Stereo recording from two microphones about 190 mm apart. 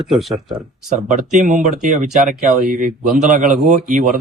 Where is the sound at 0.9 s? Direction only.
40° right (ahead or behind).